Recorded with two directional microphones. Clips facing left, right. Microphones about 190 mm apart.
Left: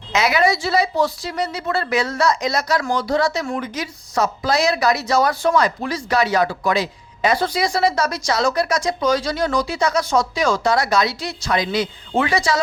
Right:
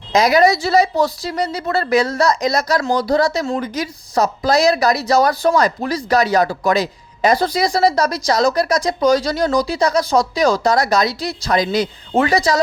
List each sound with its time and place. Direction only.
0.1 s speech: 40° right (ahead or behind)